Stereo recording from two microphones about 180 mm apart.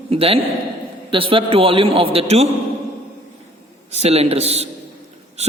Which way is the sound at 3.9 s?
35° right (ahead or behind).